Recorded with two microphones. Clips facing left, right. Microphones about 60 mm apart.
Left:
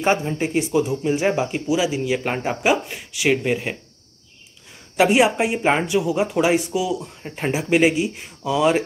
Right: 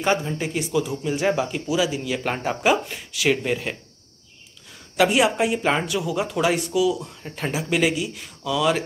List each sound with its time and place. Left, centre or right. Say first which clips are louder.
0.0 s speech: left 2 dB; left
4.9 s speech: left 3 dB; left